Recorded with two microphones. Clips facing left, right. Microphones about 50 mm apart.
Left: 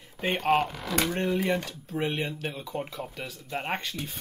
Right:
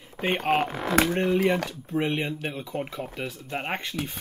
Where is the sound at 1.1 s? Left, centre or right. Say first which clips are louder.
Right 4 dB; right.